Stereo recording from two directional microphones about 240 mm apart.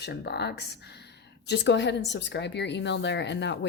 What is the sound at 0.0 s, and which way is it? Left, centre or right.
A woman's voice, left.